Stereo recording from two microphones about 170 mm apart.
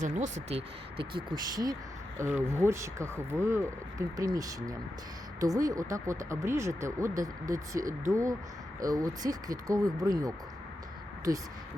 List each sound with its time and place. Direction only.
0.0 s speech: 45° right (ahead or behind); by 11.4 s 20° right (ahead or behind)